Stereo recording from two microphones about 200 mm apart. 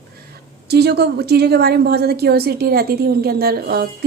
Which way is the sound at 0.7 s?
55° right (ahead or behind).